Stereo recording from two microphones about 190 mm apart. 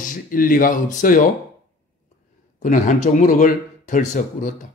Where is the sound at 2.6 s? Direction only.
40° left (ahead or behind).